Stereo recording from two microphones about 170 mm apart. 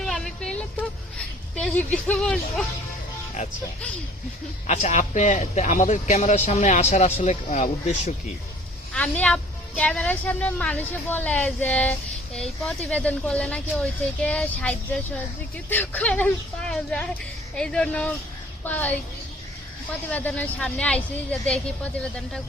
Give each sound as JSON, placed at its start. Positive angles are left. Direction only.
{"t": 0.0, "sound": "a sound", "side_deg": 5}
{"t": 1.5, "sound": "speech", "side_deg": 5}
{"t": 4.6, "sound": "a man's voice", "side_deg": 45}
{"t": 8.9, "sound": "a woman's voice", "side_deg": 5}
{"t": 20.1, "sound": "a woman's voice", "side_deg": 10}